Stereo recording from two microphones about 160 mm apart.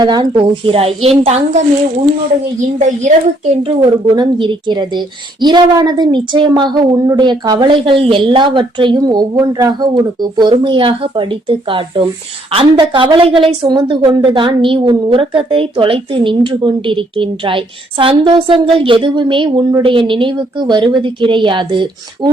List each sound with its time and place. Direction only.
0.0 s a woman's voice: 25° right (ahead or behind)
2.7 s a child's voice: 50° right (ahead or behind)
4.1 s a woman's voice: 30° right (ahead or behind)